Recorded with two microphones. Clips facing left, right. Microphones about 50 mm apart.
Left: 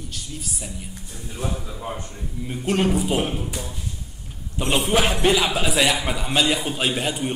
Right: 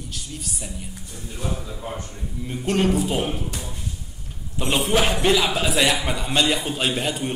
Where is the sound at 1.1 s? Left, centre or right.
Centre.